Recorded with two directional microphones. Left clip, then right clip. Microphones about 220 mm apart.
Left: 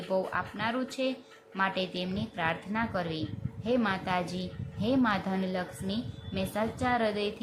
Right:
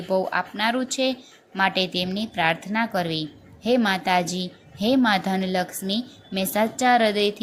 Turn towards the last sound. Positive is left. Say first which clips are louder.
# right 10 dB
turn(degrees=-15)  # may be behind; listen again after turning